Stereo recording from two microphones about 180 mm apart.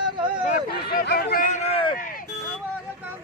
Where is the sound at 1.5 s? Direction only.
30° left (ahead or behind).